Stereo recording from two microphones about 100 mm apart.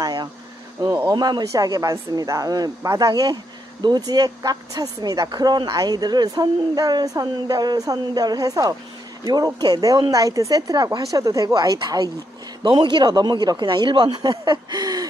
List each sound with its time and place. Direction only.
0.0 s insect: 45° right (ahead or behind)
1.0 s speech: 45° right (ahead or behind)
12.6 s speech: 50° right (ahead or behind)